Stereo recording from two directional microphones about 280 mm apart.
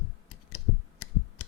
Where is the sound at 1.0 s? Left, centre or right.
Left.